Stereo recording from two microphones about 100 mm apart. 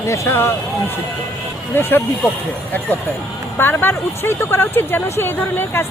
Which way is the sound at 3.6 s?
20° left (ahead or behind).